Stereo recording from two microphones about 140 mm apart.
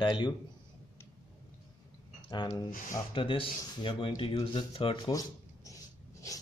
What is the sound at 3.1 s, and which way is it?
Speech, 35° left (ahead or behind).